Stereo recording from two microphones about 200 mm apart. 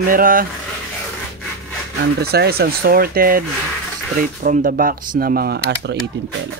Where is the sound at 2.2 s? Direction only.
50° right (ahead or behind).